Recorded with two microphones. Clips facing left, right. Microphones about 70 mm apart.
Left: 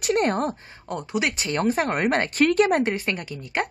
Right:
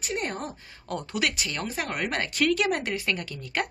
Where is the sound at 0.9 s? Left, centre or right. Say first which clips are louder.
Left 3 dB; centre.